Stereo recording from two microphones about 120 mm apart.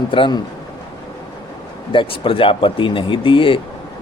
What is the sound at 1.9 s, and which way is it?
Speech, 45° left (ahead or behind).